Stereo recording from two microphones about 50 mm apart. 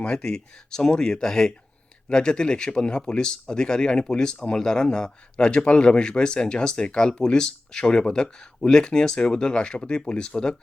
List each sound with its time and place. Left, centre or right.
0.2 s speech: centre